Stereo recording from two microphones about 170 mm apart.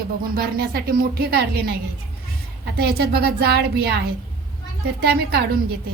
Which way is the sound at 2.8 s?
65° right (ahead or behind).